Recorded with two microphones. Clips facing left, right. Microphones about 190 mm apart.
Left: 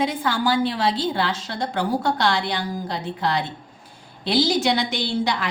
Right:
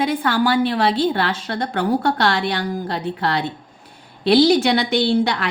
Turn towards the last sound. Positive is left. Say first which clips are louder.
# right 6 dB
turn(degrees=-60)  # may be behind; listen again after turning